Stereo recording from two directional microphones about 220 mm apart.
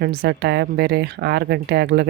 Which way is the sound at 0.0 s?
45° right (ahead or behind).